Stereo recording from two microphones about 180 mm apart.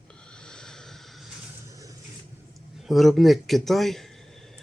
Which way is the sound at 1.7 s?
20° right (ahead or behind).